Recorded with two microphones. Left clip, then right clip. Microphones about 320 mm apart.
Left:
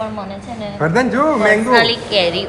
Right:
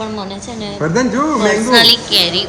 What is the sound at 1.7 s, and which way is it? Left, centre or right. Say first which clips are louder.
Speech: right 3 dB; centre.